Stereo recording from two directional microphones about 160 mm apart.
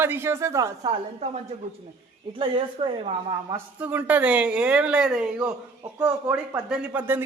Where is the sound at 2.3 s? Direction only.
30° right (ahead or behind).